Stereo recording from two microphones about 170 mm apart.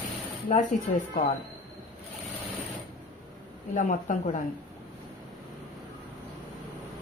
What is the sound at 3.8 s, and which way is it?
Speech, 50° left (ahead or behind).